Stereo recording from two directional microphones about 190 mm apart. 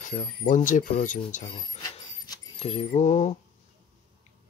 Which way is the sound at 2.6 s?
35° left (ahead or behind).